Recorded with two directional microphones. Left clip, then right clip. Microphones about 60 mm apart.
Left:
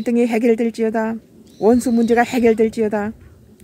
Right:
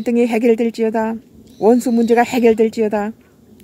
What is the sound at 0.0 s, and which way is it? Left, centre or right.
A woman's voice, right.